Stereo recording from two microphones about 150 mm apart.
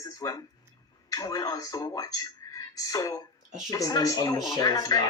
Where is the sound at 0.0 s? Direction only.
20° left (ahead or behind).